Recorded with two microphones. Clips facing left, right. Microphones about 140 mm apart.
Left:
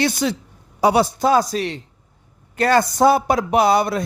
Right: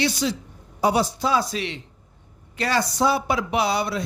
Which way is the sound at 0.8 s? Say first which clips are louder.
Left 5 dB; 70° left (ahead or behind).